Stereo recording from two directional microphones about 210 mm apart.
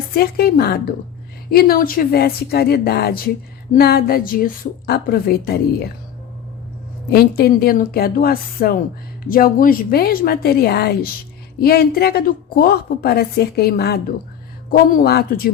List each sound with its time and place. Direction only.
0.1 s a woman's voice: 45° left (ahead or behind)
7.1 s a woman's voice: 45° left (ahead or behind)